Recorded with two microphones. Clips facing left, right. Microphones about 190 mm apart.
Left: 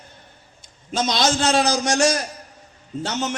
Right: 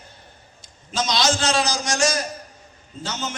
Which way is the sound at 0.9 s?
55° left (ahead or behind).